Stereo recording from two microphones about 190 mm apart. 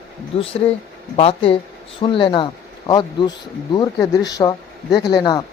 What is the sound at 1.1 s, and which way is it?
Speech, 30° left (ahead or behind).